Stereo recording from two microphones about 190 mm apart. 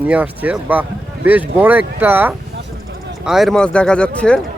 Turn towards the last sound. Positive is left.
turn(degrees=5)  # may be behind; listen again after turning